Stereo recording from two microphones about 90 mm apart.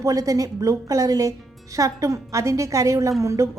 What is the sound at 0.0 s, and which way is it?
A woman's voice, 40° right (ahead or behind).